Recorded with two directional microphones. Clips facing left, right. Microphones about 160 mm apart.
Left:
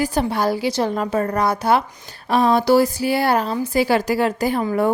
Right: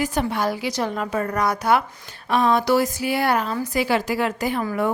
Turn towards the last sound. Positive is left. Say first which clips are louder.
# left 4 dB
turn(degrees=35)  # may be behind; listen again after turning